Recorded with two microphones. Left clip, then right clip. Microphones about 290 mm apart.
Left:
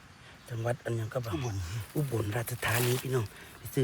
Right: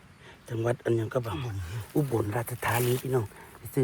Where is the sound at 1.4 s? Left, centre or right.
Centre.